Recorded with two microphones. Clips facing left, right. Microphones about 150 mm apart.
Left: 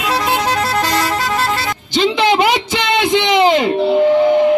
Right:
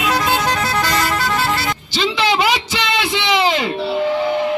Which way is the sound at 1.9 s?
55° left (ahead or behind).